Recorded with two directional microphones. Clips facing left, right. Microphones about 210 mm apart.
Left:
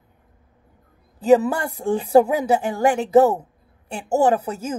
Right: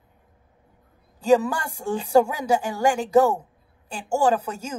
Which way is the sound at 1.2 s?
20° left (ahead or behind).